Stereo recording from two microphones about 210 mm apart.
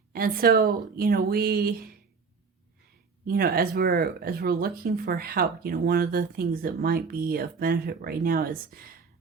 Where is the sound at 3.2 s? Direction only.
45° right (ahead or behind).